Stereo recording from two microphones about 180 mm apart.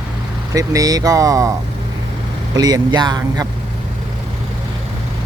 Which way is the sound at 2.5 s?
20° right (ahead or behind).